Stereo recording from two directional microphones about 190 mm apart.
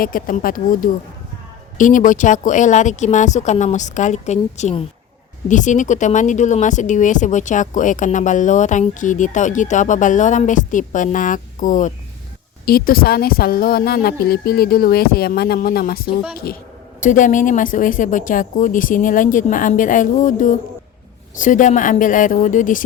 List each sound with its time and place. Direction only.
0.0 s a woman's voice: 50° left (ahead or behind)